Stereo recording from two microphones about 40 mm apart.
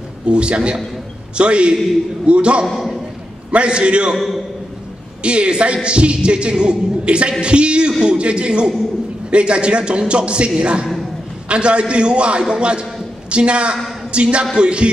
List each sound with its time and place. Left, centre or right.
0.3 s a man's voice: right
2.6 s a man's voice: centre
3.5 s a man's voice: right
5.2 s a man's voice: right